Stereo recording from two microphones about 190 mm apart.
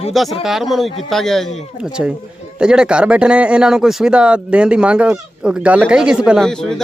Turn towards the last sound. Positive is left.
turn(degrees=5)  # may be behind; listen again after turning